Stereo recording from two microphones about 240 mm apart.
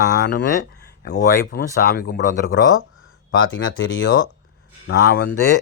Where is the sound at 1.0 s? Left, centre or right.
Left.